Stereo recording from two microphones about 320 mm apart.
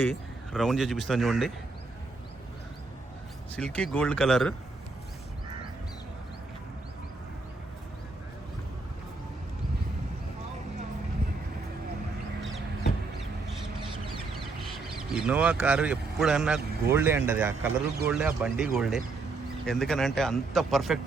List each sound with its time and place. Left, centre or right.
0.0 s speech: centre
3.5 s a man's voice: centre
14.6 s a man's voice: centre